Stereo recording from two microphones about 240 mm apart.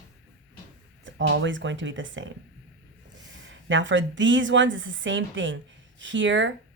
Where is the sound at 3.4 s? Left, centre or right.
Right.